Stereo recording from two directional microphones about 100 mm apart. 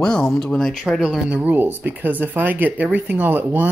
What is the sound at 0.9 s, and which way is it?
Speech, 5° right (ahead or behind).